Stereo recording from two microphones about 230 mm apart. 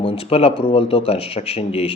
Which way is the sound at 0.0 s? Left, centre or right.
Left.